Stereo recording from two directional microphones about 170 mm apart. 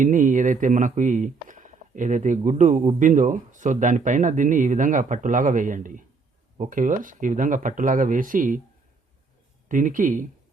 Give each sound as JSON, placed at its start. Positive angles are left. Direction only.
{"t": 0.0, "sound": "speech", "side_deg": -50}
{"t": 9.6, "sound": "speech", "side_deg": -50}